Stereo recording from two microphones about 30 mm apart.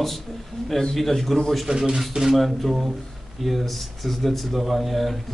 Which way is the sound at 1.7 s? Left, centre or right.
Right.